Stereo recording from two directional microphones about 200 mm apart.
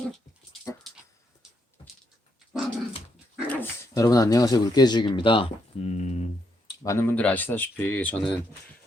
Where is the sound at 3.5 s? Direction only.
15° left (ahead or behind); by 6.7 s 35° left (ahead or behind).